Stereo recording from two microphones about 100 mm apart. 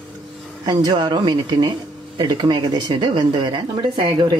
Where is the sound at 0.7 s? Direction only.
50° right (ahead or behind).